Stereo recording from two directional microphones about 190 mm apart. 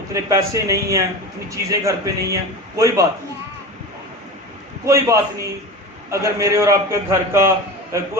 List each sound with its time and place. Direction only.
0.1 s a man's voice: 15° right (ahead or behind)
4.9 s a man's voice: 15° right (ahead or behind)